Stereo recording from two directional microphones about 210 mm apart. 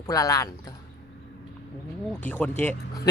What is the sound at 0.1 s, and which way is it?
Speech, 15° left (ahead or behind).